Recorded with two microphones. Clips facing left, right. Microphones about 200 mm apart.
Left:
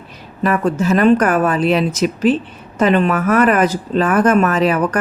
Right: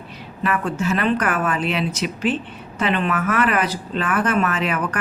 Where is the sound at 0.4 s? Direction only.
40° left (ahead or behind).